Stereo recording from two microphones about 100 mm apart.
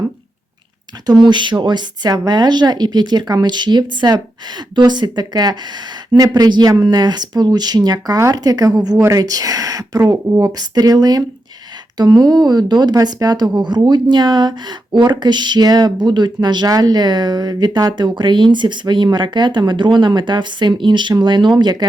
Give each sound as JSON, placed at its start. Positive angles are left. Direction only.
{"t": 1.0, "sound": "a woman's voice", "side_deg": -50}